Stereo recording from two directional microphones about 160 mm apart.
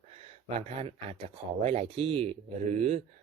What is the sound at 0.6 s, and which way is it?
Speech, 40° right (ahead or behind).